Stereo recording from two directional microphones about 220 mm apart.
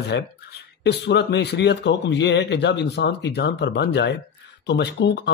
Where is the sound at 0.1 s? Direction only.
50° left (ahead or behind).